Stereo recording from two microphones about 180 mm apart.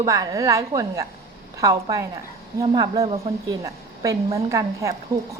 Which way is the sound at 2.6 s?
30° right (ahead or behind).